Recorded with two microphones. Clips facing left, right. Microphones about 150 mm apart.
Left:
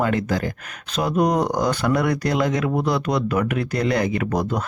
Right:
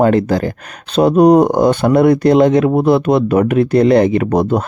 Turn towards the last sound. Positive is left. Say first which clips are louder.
# right 9 dB
turn(degrees=-30)  # may be behind; listen again after turning